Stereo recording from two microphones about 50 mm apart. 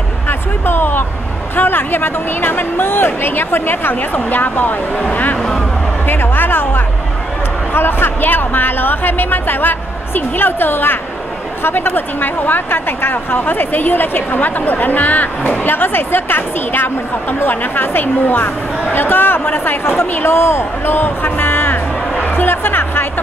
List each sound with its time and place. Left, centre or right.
0.3 s music: left
1.5 s speech: left
6.0 s music: left
7.7 s speech: left
22.2 s music: left